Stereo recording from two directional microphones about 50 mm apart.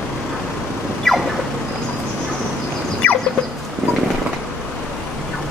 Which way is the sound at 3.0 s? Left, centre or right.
Left.